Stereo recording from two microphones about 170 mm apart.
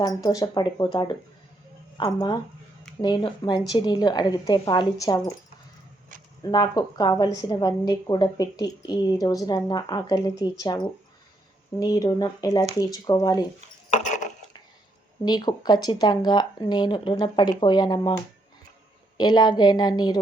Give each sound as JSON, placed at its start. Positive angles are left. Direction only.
{"t": 0.0, "sound": "a woman's voice", "side_deg": 20}
{"t": 6.4, "sound": "a woman's voice", "side_deg": 25}
{"t": 13.9, "sound": "a sound", "side_deg": 45}
{"t": 15.2, "sound": "a woman's voice", "side_deg": 25}
{"t": 19.1, "sound": "a woman's voice", "side_deg": 25}